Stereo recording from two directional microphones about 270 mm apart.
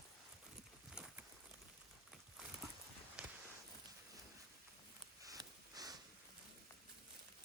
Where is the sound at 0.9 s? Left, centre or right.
Centre.